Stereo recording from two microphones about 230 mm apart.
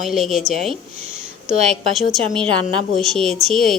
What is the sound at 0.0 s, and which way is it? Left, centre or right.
Speech, centre.